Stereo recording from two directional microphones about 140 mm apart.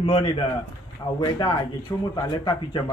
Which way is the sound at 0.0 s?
40° left (ahead or behind).